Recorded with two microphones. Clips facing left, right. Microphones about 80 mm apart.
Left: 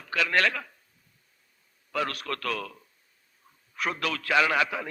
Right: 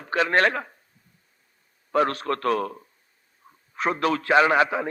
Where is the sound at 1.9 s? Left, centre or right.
Right.